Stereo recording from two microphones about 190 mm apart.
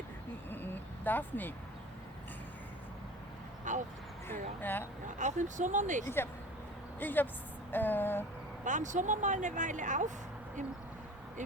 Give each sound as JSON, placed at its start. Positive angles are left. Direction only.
{"t": 0.5, "sound": "vehicle", "side_deg": 10}
{"t": 3.7, "sound": "speech", "side_deg": -40}
{"t": 4.3, "sound": "speech", "side_deg": 10}
{"t": 5.0, "sound": "speech", "side_deg": -40}
{"t": 7.0, "sound": "speech", "side_deg": 10}
{"t": 8.6, "sound": "speech", "side_deg": -40}